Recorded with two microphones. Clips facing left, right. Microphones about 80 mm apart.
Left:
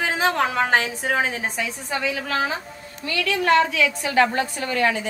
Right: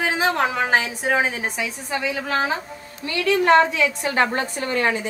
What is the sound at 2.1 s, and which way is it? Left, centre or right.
A woman's voice, right.